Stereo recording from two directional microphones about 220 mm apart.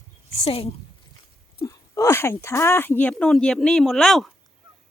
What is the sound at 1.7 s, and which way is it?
Speech, 15° left (ahead or behind).